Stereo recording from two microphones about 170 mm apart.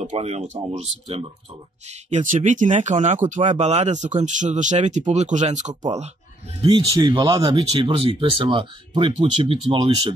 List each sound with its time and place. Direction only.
0.0 s speech: 40° right (ahead or behind)
1.9 s speech: 45° right (ahead or behind)
6.6 s speech: 25° right (ahead or behind)